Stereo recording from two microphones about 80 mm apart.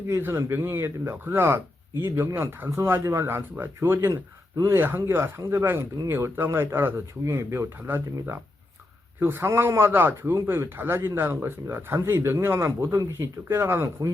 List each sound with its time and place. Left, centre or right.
0.1 s a man's voice: right
4.1 s speech: right
4.8 s a man's voice: right
9.2 s a man's voice: right